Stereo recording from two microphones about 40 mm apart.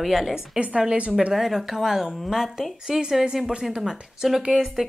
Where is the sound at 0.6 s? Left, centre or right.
Right.